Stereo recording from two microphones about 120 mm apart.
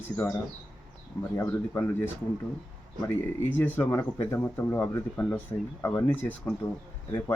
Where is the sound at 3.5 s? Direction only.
20° left (ahead or behind).